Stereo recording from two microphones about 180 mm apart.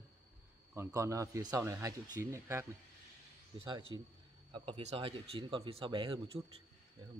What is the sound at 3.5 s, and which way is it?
Speech, 25° right (ahead or behind).